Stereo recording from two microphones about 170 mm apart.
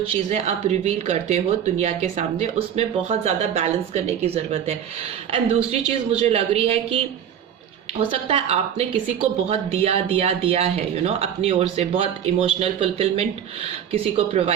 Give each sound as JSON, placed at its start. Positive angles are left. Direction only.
{"t": 0.3, "sound": "speech", "side_deg": -40}